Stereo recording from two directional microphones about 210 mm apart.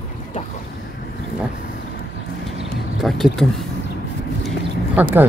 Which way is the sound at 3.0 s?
Centre (ahead or behind).